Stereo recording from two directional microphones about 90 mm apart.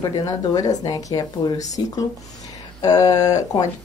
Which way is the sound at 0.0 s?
45° left (ahead or behind).